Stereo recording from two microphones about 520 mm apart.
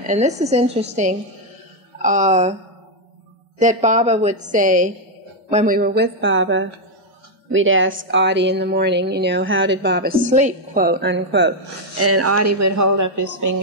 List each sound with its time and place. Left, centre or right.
0.0 s a woman's voice: centre
3.5 s a woman's voice: centre; by 13.6 s right